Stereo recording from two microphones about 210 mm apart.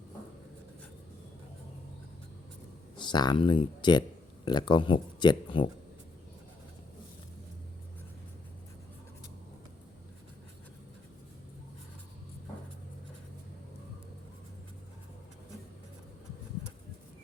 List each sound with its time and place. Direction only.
2.9 s speech: 20° left (ahead or behind)